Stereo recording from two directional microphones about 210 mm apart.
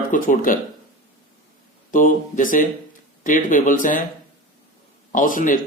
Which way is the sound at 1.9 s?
40° left (ahead or behind).